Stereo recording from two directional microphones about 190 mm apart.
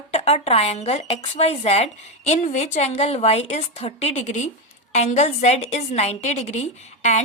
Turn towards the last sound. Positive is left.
turn(degrees=35)  # may be behind; listen again after turning